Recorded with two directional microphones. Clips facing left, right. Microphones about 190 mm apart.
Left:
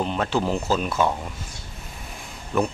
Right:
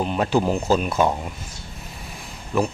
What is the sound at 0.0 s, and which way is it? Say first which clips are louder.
Speech: right 3 dB; 10° right (ahead or behind).